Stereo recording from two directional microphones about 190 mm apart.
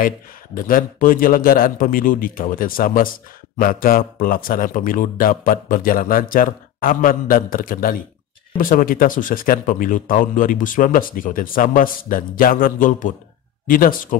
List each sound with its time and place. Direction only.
0.7 s a man's voice: 45° left (ahead or behind)